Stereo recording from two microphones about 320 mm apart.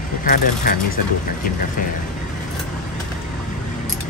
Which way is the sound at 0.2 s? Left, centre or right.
Left.